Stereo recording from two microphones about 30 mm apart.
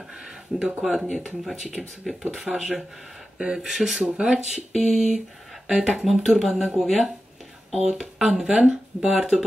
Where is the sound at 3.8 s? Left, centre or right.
Centre.